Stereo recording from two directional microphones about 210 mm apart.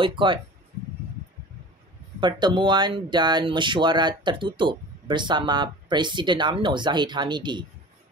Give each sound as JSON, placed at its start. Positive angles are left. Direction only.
{"t": 0.0, "sound": "speech", "side_deg": -25}
{"t": 2.1, "sound": "speech", "side_deg": -20}